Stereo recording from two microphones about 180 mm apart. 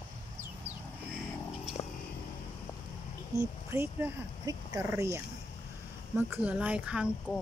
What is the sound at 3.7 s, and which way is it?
Speech, 15° right (ahead or behind).